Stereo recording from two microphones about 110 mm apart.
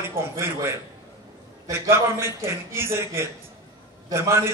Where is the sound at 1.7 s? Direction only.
25° right (ahead or behind).